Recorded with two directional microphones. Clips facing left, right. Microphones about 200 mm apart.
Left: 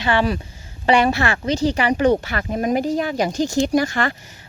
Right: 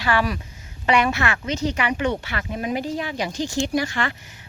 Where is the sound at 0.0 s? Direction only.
25° left (ahead or behind).